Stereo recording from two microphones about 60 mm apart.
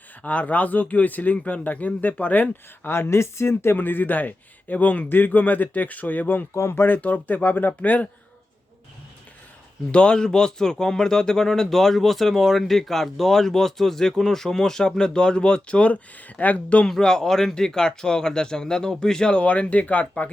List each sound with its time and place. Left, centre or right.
0.2 s speech: left
2.9 s speech: left
6.5 s speech: left
9.9 s speech: centre
16.8 s speech: centre; by 20.3 s left